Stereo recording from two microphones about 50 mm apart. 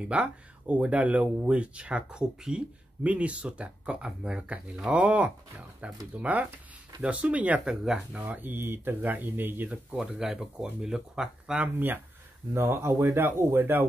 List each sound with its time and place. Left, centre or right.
0.1 s speech: right
7.6 s speech: centre
8.3 s speech: right
8.5 s speech: right
9.9 s speech: centre
11.7 s speech: right
12.5 s speech: right
13.0 s speech: right